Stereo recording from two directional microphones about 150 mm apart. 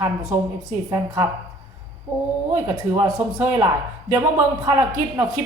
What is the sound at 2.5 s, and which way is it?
Speech, 20° right (ahead or behind).